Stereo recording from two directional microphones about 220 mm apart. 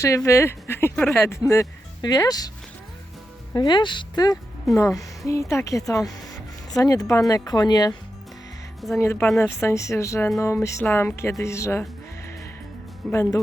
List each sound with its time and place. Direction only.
0.0 s speech: 15° left (ahead or behind)
3.5 s speech: 20° left (ahead or behind)
9.0 s speech: 10° left (ahead or behind)
13.1 s speech: 15° left (ahead or behind)